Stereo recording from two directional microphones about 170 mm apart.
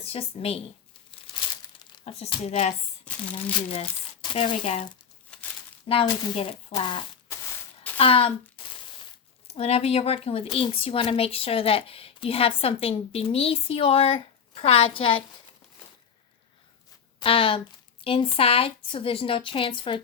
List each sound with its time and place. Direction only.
0.0 s a woman's voice: 35° left (ahead or behind)
1.4 s crumpling: 30° left (ahead or behind)
1.9 s speech: 35° left (ahead or behind)
4.2 s speech: 30° left (ahead or behind)
5.3 s crumpling: 5° left (ahead or behind)
5.9 s a woman's voice: 35° left (ahead or behind)
17.2 s a woman's voice: 30° left (ahead or behind)